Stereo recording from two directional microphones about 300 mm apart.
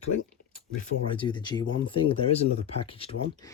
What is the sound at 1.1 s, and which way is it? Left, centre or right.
Speech, centre.